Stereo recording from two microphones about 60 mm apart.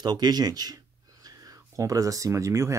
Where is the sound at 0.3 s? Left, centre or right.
Right.